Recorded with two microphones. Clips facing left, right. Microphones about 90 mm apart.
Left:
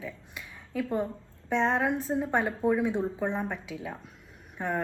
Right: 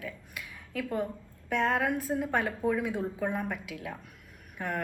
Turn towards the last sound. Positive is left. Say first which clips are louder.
# left 3 dB
turn(degrees=25)  # may be behind; listen again after turning